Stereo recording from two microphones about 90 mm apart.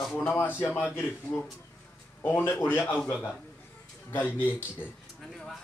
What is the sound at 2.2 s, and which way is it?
Speech, 20° left (ahead or behind).